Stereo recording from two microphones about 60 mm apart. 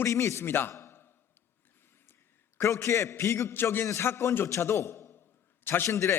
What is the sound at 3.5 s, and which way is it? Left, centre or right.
A man's voice, left.